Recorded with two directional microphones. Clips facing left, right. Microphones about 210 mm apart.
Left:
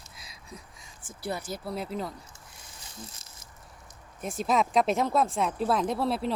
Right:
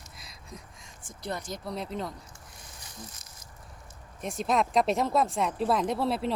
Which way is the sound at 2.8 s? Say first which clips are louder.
Left 1 dB; 25° left (ahead or behind).